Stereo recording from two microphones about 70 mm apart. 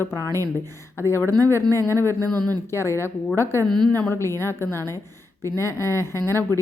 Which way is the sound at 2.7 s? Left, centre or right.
Left.